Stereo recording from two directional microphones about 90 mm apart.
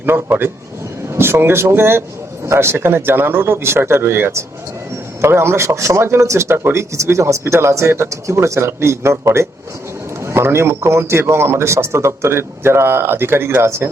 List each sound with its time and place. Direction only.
0.0 s a man's voice: 25° right (ahead or behind)